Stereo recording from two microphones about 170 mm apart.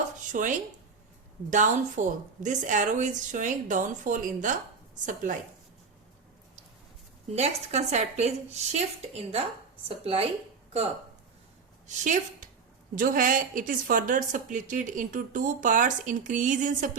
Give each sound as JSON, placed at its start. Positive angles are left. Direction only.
{"t": 0.3, "sound": "a woman's voice", "side_deg": -50}
{"t": 7.3, "sound": "a woman's voice", "side_deg": -40}
{"t": 11.9, "sound": "a woman's voice", "side_deg": -45}